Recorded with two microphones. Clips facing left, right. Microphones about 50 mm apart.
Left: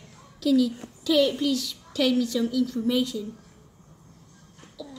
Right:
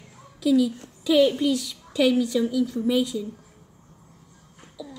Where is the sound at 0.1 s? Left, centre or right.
Centre.